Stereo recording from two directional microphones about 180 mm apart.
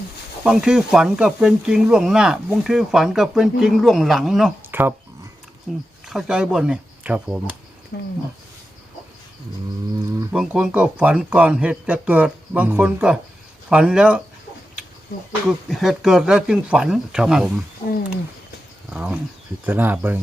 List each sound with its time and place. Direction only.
0.4 s speech: 5° right (ahead or behind)
5.7 s speech: centre (ahead or behind)
7.9 s speech: 60° left (ahead or behind)
10.3 s speech: 5° right (ahead or behind)
15.4 s speech: centre (ahead or behind)
18.9 s speech: 5° right (ahead or behind)